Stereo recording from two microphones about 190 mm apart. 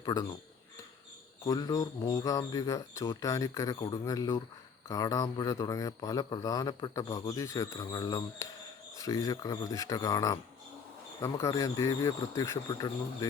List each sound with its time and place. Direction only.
0.0 s speech: 20° left (ahead or behind)
1.5 s speech: 20° left (ahead or behind)